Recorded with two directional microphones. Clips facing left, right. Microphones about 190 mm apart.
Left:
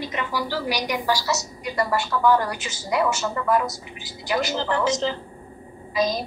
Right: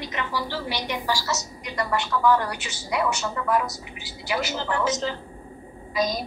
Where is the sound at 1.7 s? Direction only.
5° left (ahead or behind).